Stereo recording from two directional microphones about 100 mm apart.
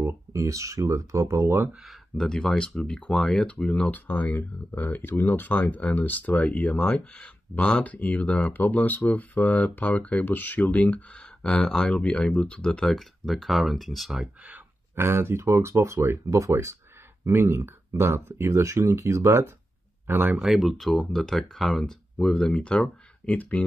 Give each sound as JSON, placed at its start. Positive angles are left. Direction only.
{"t": 0.3, "sound": "speech", "side_deg": -30}
{"t": 1.8, "sound": "speech", "side_deg": 0}
{"t": 14.2, "sound": "speech", "side_deg": -15}
{"t": 20.3, "sound": "speech", "side_deg": 0}